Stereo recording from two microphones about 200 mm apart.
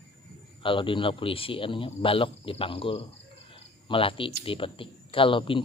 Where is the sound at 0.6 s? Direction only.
25° left (ahead or behind).